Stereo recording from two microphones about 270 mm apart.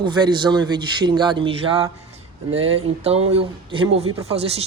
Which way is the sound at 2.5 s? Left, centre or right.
Right.